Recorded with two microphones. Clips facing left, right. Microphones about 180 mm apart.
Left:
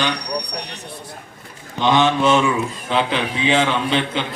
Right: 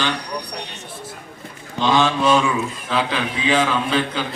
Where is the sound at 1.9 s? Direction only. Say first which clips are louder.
Left 1 dB; 20° left (ahead or behind).